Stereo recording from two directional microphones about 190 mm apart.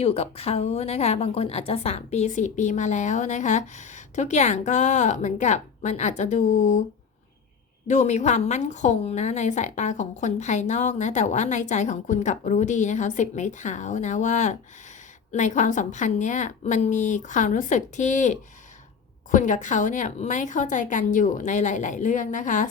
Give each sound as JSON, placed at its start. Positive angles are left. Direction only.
{"t": 0.0, "sound": "a woman's voice", "side_deg": 30}
{"t": 7.9, "sound": "a woman's voice", "side_deg": 40}